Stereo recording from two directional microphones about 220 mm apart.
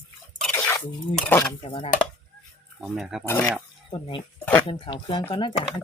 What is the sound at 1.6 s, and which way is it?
Speech, 25° left (ahead or behind).